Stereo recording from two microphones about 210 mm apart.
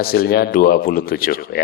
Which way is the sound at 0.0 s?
45° left (ahead or behind).